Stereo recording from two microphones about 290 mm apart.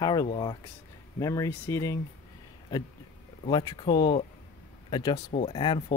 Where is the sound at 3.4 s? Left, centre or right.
Centre.